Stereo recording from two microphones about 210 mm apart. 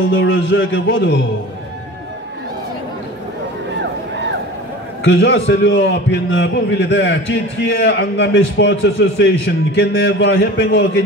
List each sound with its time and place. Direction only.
0.1 s a man's voice: 65° left (ahead or behind)
5.0 s a man's voice: 55° left (ahead or behind)